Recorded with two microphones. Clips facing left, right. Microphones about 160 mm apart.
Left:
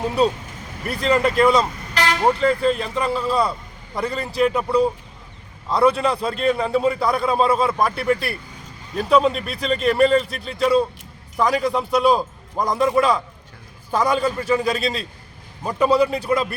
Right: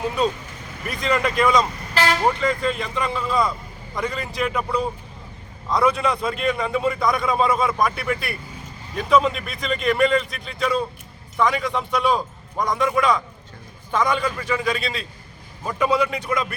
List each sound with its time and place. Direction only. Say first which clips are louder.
0.9 s a man's voice: left 4 dB; 35° left (ahead or behind)